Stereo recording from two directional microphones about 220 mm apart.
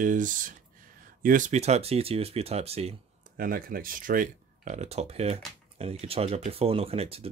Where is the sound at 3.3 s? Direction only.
40° right (ahead or behind).